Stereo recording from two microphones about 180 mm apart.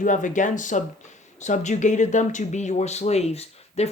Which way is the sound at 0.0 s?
45° left (ahead or behind).